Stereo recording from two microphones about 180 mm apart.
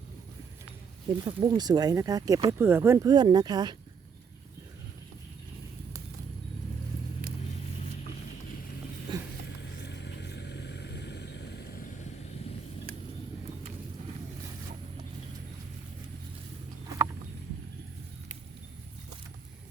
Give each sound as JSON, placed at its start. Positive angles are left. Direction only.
{"t": 1.2, "sound": "speech", "side_deg": -25}
{"t": 9.1, "sound": "a sound", "side_deg": -25}
{"t": 9.6, "sound": "vehicle", "side_deg": 70}